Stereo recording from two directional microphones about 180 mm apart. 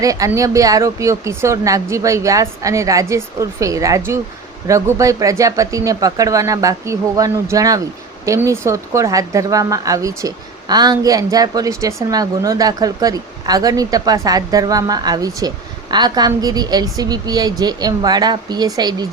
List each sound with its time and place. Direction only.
0.0 s a woman's voice: 20° right (ahead or behind)